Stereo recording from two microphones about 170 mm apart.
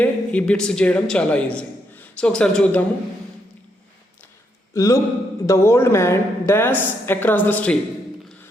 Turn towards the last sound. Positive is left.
turn(degrees=10)  # may be behind; listen again after turning